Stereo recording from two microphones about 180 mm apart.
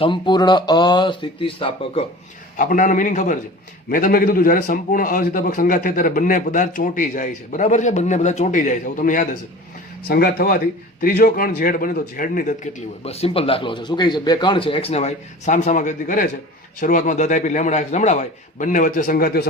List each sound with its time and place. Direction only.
0.0 s speech: 25° left (ahead or behind)
2.6 s a man's voice: 45° left (ahead or behind)